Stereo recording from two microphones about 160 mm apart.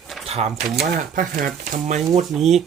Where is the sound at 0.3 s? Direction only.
40° right (ahead or behind).